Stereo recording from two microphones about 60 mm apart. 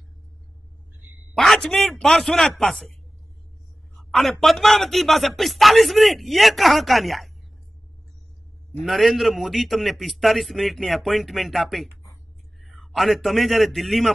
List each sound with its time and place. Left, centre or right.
1.3 s a man's voice: centre
3.9 s a man's voice: centre
8.8 s a man's voice: centre